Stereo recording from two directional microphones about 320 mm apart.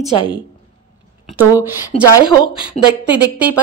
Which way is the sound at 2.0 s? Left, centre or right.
Centre.